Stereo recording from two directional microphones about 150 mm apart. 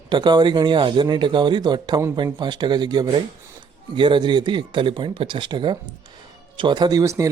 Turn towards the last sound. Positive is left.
turn(degrees=-20)  # may be behind; listen again after turning